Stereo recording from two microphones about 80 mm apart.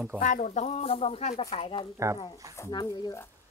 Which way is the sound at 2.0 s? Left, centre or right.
Right.